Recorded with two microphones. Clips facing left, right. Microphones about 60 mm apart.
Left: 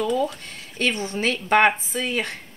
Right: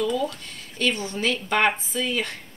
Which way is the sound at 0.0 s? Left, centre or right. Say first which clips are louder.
Left 2 dB; left.